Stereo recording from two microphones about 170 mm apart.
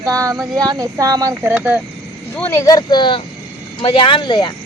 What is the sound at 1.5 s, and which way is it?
Speech, 5° right (ahead or behind).